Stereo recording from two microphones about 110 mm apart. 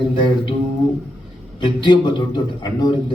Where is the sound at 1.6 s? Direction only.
45° left (ahead or behind).